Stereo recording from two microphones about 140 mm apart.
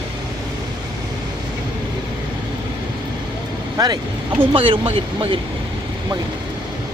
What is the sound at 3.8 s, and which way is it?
Speech, 25° right (ahead or behind).